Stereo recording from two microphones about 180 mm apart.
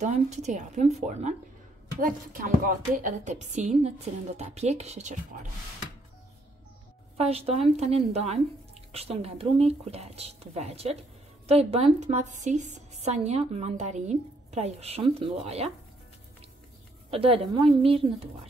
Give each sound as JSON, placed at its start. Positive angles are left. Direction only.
{"t": 0.0, "sound": "a woman's voice", "side_deg": -40}
{"t": 7.2, "sound": "a woman's voice", "side_deg": -35}
{"t": 17.1, "sound": "a woman's voice", "side_deg": -30}